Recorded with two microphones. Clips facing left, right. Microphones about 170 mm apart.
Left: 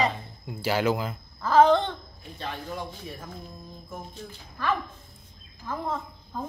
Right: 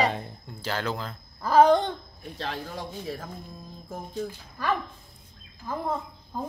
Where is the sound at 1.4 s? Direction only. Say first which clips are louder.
Even; 10° right (ahead or behind).